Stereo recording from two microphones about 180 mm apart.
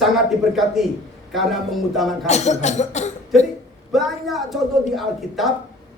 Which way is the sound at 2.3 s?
40° left (ahead or behind).